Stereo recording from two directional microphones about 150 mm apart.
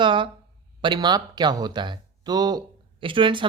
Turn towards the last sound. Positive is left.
turn(degrees=-35)  # may be behind; listen again after turning